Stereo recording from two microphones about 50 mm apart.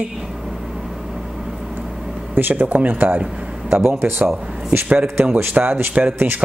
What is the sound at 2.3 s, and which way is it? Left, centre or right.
Speech, right.